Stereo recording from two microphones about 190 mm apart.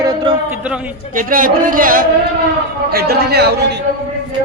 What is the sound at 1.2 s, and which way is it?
A man's voice, 45° right (ahead or behind).